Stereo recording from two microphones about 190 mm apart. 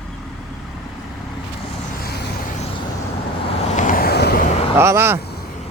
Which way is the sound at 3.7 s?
40° left (ahead or behind).